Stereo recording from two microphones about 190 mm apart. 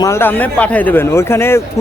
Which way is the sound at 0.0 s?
15° left (ahead or behind).